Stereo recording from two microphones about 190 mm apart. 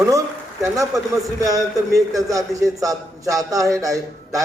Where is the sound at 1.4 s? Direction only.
20° right (ahead or behind).